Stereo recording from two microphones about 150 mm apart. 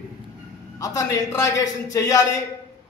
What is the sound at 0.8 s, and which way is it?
A man's voice, 25° left (ahead or behind).